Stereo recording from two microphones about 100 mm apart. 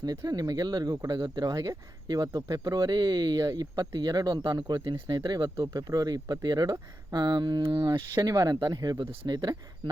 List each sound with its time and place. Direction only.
0.0 s speech: 40° right (ahead or behind)
8.2 s speech: 35° right (ahead or behind)